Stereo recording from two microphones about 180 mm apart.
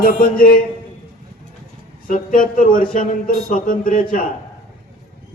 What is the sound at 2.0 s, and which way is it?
Speech, 50° left (ahead or behind).